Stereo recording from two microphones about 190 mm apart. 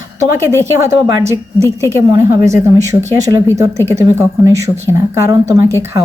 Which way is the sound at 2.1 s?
15° right (ahead or behind).